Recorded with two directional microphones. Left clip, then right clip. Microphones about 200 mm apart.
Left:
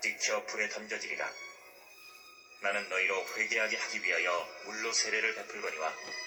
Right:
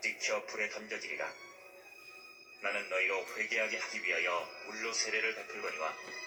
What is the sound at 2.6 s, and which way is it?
A man's voice, 40° left (ahead or behind).